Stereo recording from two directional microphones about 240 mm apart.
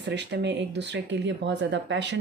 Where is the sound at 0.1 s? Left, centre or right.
Right.